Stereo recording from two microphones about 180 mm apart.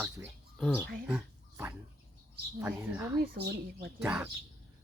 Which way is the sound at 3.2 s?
60° right (ahead or behind).